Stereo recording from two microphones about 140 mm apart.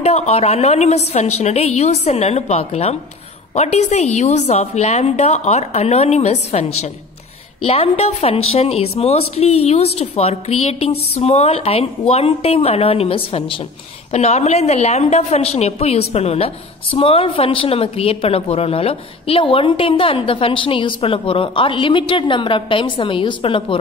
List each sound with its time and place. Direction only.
0.0 s a woman's voice: 50° left (ahead or behind)
14.1 s a woman's voice: 50° left (ahead or behind)